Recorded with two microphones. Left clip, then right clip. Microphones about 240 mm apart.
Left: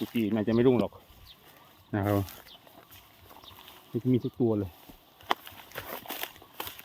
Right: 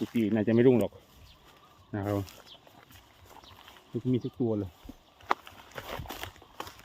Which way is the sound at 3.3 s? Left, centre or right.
Centre.